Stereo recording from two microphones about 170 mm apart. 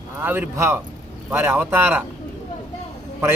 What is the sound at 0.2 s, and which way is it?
A man's voice, 10° right (ahead or behind).